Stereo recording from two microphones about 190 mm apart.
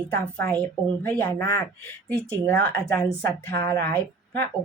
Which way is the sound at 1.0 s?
10° left (ahead or behind).